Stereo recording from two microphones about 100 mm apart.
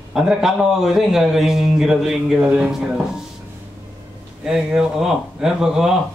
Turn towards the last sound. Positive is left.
turn(degrees=-5)  # may be behind; listen again after turning